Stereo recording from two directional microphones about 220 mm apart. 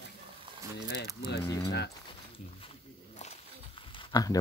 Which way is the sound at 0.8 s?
50° left (ahead or behind).